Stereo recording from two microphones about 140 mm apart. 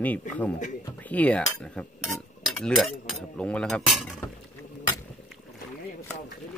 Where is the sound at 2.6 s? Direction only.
Centre (ahead or behind).